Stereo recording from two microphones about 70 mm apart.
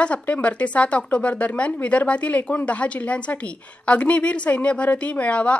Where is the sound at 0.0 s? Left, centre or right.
Centre.